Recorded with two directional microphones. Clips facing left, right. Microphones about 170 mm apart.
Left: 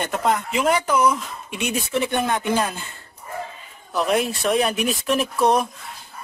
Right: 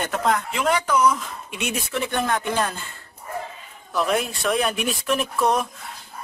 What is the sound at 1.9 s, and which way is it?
Speech, 20° left (ahead or behind).